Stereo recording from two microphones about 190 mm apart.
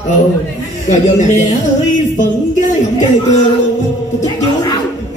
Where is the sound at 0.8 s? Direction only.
40° left (ahead or behind).